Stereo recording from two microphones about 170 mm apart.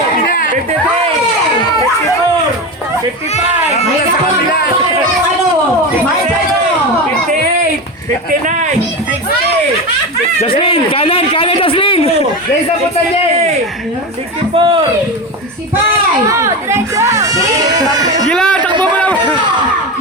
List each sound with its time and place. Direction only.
0.3 s chatter: 55° left (ahead or behind)
3.3 s a sound: 40° left (ahead or behind)
10.4 s speech: 30° left (ahead or behind)
14.5 s speech: 30° right (ahead or behind)
16.3 s chatter: 15° right (ahead or behind)
18.3 s a sound: 5° left (ahead or behind)